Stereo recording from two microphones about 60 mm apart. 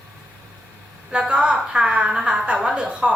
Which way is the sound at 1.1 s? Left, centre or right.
Centre.